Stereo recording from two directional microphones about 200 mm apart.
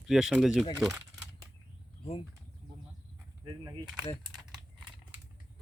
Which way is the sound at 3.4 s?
20° right (ahead or behind).